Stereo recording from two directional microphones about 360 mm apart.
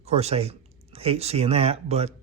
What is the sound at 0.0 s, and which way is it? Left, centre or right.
Speech, centre.